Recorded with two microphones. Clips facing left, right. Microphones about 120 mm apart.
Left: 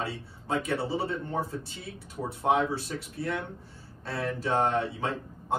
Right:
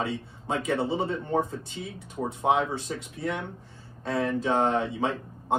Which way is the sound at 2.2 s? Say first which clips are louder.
Right 1 dB; 20° right (ahead or behind).